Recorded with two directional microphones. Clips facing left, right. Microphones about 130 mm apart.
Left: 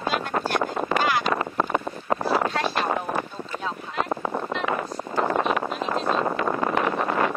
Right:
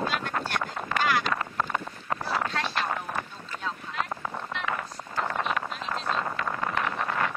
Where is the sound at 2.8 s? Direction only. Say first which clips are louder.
Left 6 dB; 30° left (ahead or behind).